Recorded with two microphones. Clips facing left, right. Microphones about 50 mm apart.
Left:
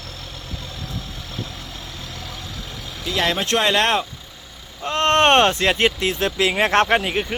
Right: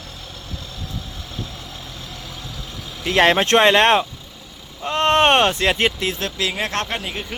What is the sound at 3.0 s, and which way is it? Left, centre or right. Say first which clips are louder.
Speech: right 6 dB; right.